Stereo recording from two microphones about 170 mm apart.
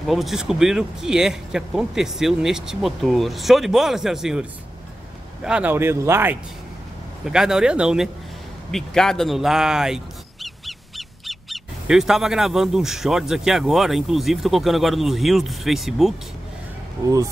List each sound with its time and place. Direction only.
0.0 s speech: centre (ahead or behind)
7.2 s speech: 5° right (ahead or behind)